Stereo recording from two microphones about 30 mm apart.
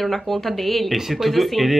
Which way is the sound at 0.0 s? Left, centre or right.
Centre.